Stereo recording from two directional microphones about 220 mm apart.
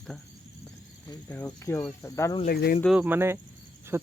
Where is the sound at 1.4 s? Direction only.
15° left (ahead or behind).